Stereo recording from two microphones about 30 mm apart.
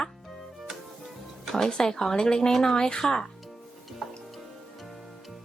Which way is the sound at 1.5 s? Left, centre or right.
Left.